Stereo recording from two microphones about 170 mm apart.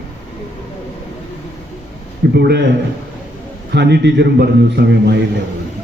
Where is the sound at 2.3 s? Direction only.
75° right (ahead or behind).